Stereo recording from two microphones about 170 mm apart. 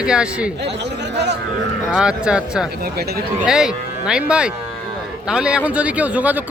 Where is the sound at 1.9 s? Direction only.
5° right (ahead or behind).